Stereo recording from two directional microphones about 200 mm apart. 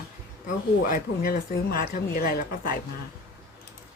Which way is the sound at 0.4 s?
45° left (ahead or behind).